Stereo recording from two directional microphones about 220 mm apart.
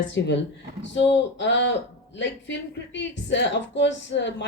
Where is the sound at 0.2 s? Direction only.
50° left (ahead or behind).